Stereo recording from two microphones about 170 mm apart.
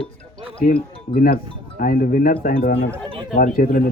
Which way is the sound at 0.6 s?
60° left (ahead or behind).